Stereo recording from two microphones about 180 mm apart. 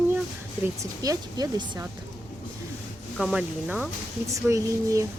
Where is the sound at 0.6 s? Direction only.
20° right (ahead or behind).